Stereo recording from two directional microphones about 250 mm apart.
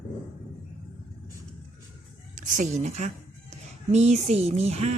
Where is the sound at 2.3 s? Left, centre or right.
Right.